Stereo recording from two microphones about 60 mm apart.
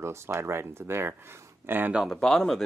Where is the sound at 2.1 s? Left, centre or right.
Centre.